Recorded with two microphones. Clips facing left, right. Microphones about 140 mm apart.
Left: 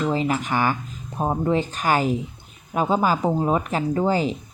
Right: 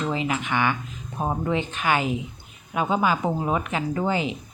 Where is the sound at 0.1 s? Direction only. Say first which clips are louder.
Left 3 dB; 40° left (ahead or behind).